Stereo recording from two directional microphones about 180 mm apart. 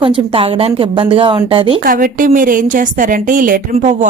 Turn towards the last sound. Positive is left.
turn(degrees=-45)  # may be behind; listen again after turning